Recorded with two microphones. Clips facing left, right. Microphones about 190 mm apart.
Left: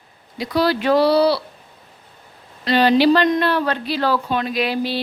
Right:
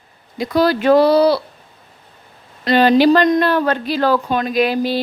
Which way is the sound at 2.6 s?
50° right (ahead or behind).